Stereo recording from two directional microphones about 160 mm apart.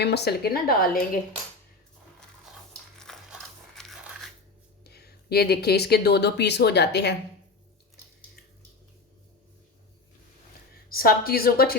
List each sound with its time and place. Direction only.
0.0 s a woman's voice: 90° left; by 0.9 s 70° left (ahead or behind)
3.0 s crumpling: 5° left (ahead or behind)
4.8 s speech: 90° left
10.8 s a woman's voice: 65° left (ahead or behind)